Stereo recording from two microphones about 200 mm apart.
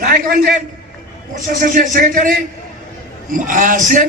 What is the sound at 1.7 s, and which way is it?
Speech, 40° right (ahead or behind).